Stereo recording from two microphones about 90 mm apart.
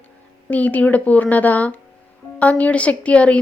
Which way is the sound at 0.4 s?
15° left (ahead or behind).